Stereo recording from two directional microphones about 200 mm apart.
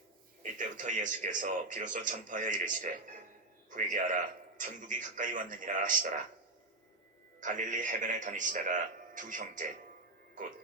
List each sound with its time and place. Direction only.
0.6 s a man's voice: 40° right (ahead or behind)
7.4 s a man's voice: 40° right (ahead or behind)